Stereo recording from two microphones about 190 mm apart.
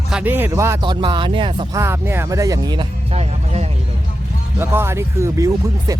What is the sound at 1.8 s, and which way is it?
Speech, 15° right (ahead or behind).